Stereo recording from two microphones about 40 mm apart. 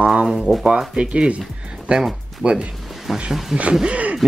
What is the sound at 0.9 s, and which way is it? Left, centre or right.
Speech, right.